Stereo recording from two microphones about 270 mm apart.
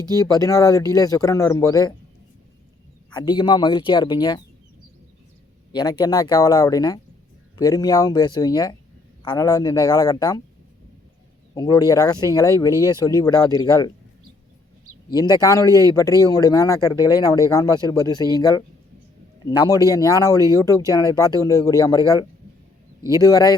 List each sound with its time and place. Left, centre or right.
0.4 s speech: centre
3.1 s speech: centre
5.7 s speech: centre
11.5 s speech: centre
15.1 s speech: centre